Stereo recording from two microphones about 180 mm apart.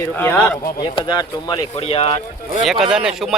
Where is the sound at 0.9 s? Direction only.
25° left (ahead or behind).